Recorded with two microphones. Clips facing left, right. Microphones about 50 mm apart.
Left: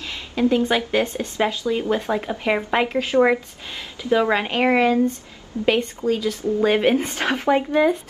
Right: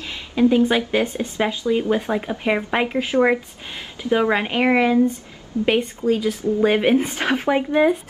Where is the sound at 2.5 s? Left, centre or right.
Centre.